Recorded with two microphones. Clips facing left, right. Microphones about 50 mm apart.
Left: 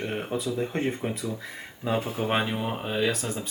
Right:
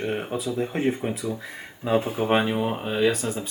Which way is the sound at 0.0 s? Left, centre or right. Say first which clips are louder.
Right 2 dB; centre.